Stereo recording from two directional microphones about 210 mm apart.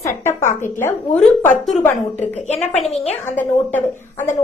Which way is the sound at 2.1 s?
30° left (ahead or behind).